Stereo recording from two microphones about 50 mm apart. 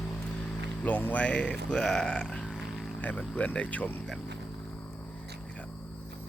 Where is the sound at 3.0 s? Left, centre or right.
Left.